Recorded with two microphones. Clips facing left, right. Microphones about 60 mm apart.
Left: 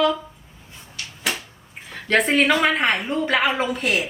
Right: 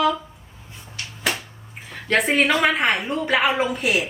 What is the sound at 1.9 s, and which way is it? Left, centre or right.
Speech, centre.